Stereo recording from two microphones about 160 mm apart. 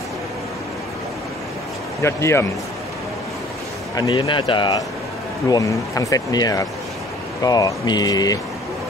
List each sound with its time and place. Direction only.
2.0 s speech: 15° left (ahead or behind)
3.9 s a man's voice: 25° left (ahead or behind)